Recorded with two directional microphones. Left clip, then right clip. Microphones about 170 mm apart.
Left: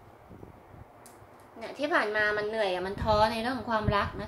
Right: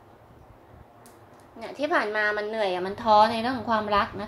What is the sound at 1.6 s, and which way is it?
A woman's voice, 30° right (ahead or behind).